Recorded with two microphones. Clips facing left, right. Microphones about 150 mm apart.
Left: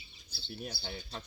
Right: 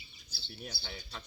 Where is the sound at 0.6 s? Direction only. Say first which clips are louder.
Left 2 dB; 35° left (ahead or behind).